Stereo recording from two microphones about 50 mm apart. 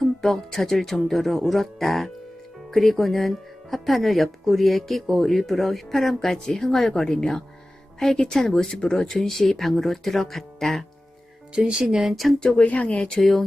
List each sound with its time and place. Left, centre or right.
0.0 s speech: centre
11.5 s speech: centre
12.0 s speech: centre
12.4 s speech: left